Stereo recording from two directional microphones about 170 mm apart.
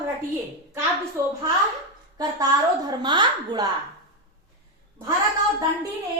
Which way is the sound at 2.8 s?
25° right (ahead or behind).